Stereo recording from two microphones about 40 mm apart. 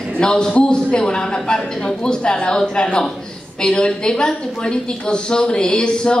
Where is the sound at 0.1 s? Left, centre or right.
Left.